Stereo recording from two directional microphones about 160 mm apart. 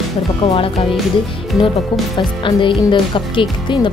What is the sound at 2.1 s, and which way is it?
Speech, 30° left (ahead or behind).